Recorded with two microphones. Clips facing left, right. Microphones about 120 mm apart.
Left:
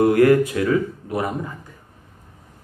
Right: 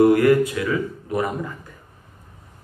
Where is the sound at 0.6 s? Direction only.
45° left (ahead or behind).